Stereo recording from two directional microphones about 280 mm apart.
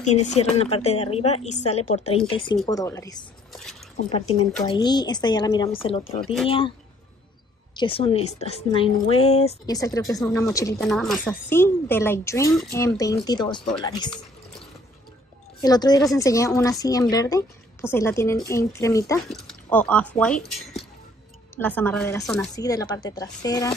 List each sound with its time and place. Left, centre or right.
0.3 s a woman's voice: left
7.7 s a woman's voice: centre
10.8 s a woman's voice: centre
15.6 s a woman's voice: centre
21.5 s a woman's voice: centre